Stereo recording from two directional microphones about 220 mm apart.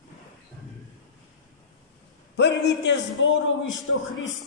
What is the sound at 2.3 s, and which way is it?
A man's voice, 50° left (ahead or behind).